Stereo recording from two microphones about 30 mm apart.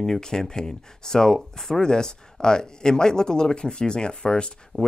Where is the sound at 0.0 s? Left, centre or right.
Left.